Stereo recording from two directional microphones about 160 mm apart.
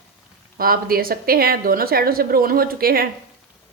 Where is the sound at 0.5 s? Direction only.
65° right (ahead or behind).